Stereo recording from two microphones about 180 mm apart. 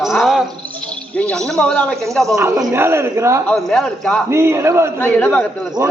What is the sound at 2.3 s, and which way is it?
A man's voice, 15° right (ahead or behind).